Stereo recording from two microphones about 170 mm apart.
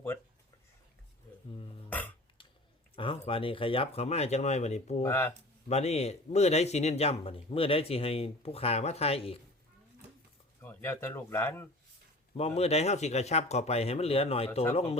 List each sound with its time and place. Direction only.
2.9 s speech: 30° left (ahead or behind)
5.0 s speech: 15° left (ahead or behind)
5.6 s speech: 40° left (ahead or behind)
10.6 s speech: 10° left (ahead or behind)
12.3 s speech: 35° left (ahead or behind)